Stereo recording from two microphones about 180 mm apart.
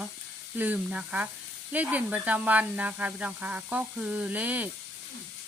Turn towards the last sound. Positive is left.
turn(degrees=-10)  # may be behind; listen again after turning